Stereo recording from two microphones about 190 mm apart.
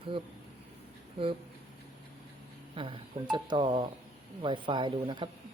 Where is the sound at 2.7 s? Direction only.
25° right (ahead or behind).